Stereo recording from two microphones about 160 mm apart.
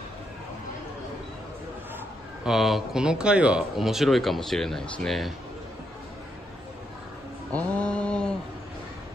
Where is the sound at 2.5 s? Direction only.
Centre (ahead or behind).